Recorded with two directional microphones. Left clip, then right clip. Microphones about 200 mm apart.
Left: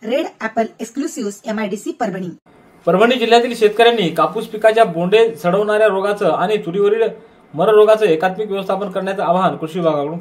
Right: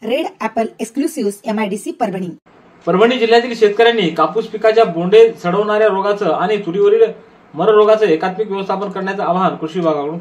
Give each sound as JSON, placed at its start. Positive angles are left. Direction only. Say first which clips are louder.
{"t": 0.0, "sound": "speech", "louder": "right 1 dB", "side_deg": -15}
{"t": 2.8, "sound": "speech", "louder": "right 1 dB", "side_deg": 55}